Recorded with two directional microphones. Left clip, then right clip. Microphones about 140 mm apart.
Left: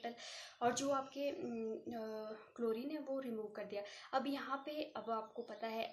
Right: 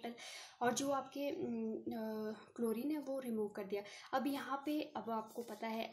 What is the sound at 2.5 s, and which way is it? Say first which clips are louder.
A woman's voice: even; 50° right (ahead or behind).